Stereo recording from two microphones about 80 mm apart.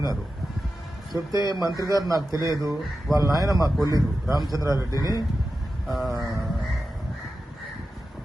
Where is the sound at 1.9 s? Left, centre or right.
Right.